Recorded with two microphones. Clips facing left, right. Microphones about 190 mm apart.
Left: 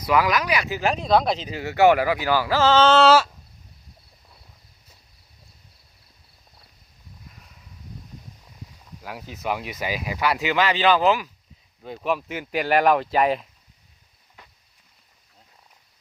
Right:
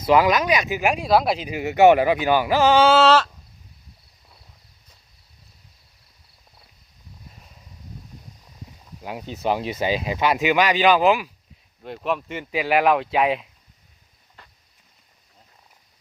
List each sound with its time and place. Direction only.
0.0 s speech: 25° right (ahead or behind)
3.0 s speech: 5° left (ahead or behind)
9.0 s speech: 20° right (ahead or behind)
11.8 s speech: centre (ahead or behind)